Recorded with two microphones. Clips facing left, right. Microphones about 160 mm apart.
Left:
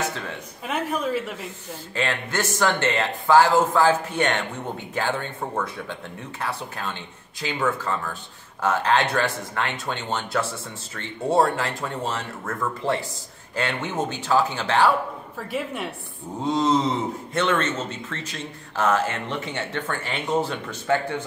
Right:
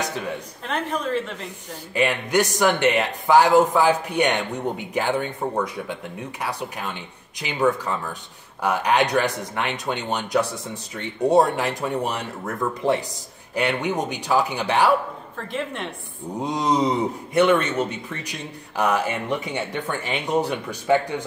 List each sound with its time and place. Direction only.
0.7 s a woman's voice: 10° left (ahead or behind)
2.0 s a man's voice: 15° right (ahead or behind)
15.3 s a woman's voice: 5° left (ahead or behind)
16.4 s a man's voice: 15° right (ahead or behind)